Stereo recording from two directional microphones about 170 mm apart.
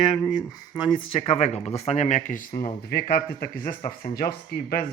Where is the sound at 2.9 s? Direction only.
65° left (ahead or behind).